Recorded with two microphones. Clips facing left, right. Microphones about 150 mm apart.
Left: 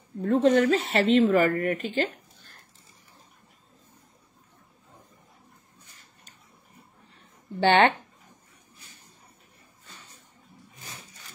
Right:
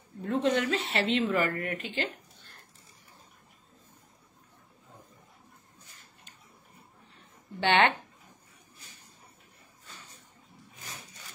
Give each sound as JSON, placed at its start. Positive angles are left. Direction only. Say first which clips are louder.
{"t": 0.2, "sound": "speech", "louder": "left 7 dB", "side_deg": 45}
{"t": 7.6, "sound": "speech", "louder": "left 5 dB", "side_deg": 35}